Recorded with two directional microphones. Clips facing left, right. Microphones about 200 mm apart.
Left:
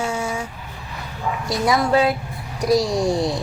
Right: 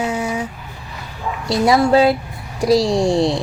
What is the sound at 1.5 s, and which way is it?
Speech, 30° right (ahead or behind).